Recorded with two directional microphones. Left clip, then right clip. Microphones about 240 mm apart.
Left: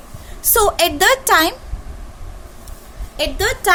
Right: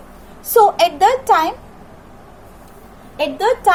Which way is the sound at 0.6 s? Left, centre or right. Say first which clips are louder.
Right 4 dB; left.